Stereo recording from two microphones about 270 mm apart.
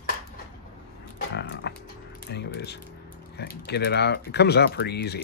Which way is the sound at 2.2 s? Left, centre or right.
Left.